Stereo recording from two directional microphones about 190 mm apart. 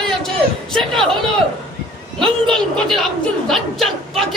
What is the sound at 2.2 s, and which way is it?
A woman's voice, 5° left (ahead or behind).